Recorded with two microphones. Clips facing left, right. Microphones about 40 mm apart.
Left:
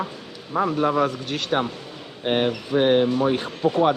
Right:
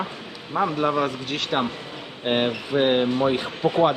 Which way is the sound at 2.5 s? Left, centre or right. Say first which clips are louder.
Left 2 dB; right.